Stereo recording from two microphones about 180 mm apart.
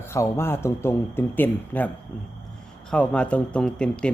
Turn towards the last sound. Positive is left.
turn(degrees=5)  # may be behind; listen again after turning